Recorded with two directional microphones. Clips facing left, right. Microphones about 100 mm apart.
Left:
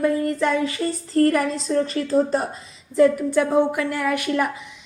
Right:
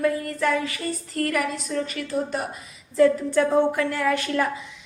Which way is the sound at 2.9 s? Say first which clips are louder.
Left 2 dB; 15° left (ahead or behind).